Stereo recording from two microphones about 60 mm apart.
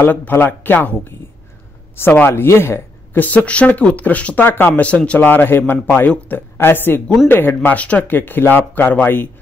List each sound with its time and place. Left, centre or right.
0.1 s speech: left
4.4 s speech: left
4.7 s speech: left
5.2 s speech: left
7.7 s speech: left
8.2 s speech: left